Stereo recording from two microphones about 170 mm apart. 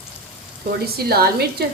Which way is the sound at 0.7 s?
65° right (ahead or behind).